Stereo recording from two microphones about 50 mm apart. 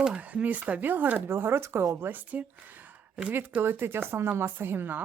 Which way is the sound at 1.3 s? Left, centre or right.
Right.